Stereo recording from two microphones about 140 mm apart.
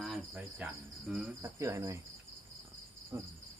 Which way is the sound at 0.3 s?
5° right (ahead or behind).